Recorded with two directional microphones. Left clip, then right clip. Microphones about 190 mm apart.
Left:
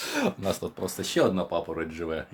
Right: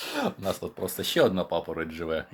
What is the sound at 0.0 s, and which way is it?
Speech, 10° left (ahead or behind).